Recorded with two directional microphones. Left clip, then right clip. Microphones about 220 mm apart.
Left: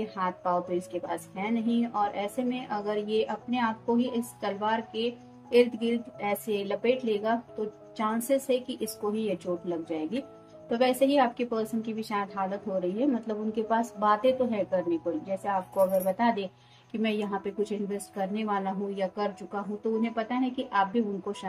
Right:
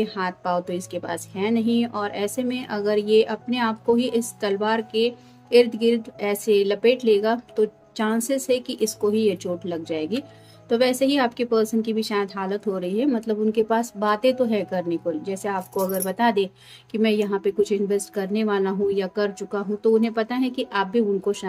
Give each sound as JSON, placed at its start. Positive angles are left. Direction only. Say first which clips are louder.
{"t": 0.0, "sound": "a woman's voice", "louder": "right 5 dB", "side_deg": -45}